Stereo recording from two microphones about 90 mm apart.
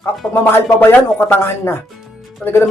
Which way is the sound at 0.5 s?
25° left (ahead or behind).